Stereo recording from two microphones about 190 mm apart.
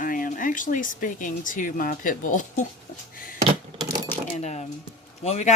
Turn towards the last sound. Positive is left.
turn(degrees=35)  # may be behind; listen again after turning